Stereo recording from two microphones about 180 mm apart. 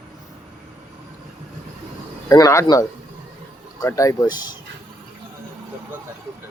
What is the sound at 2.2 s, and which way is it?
Speech, 20° left (ahead or behind).